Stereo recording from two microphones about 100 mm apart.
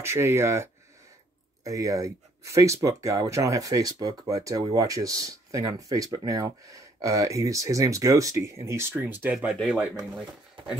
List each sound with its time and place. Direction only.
0.0 s speech: 25° right (ahead or behind)
9.3 s speech: 5° right (ahead or behind)